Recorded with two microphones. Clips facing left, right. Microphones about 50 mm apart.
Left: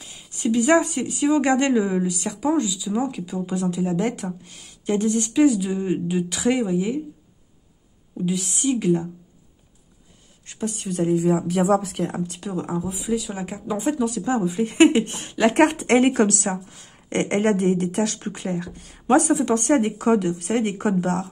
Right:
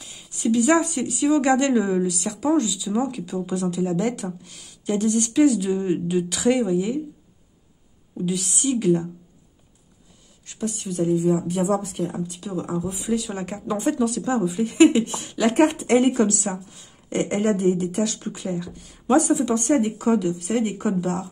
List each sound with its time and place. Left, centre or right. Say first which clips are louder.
0.0 s a sound: even; left
0.6 s a woman's voice: left 1 dB; left
1.7 s a woman's voice: even; centre
8.1 s speech: left 1 dB; centre
10.4 s speech: even; left
11.1 s speech: left 1 dB; left
12.4 s speech: even; left
12.7 s a woman's voice: right 1 dB; centre
14.2 s speech: even; left
14.6 s speech: even; left
16.0 s speech: left 1 dB; left